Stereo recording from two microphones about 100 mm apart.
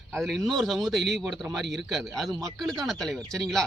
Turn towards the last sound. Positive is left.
turn(degrees=5)  # may be behind; listen again after turning